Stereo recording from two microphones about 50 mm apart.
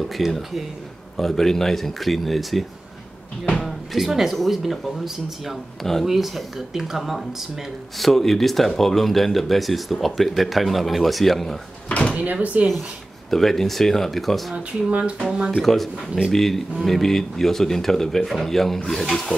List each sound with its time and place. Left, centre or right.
0.1 s speech: centre
11.9 s door: centre
12.2 s speech: right
13.3 s speech: centre
14.5 s speech: right
15.5 s speech: centre